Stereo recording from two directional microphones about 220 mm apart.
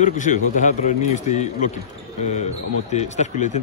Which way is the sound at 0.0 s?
35° left (ahead or behind).